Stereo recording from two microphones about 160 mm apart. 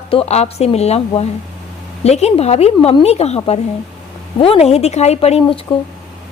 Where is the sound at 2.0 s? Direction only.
40° left (ahead or behind).